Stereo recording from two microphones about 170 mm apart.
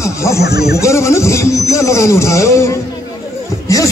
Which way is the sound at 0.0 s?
15° left (ahead or behind).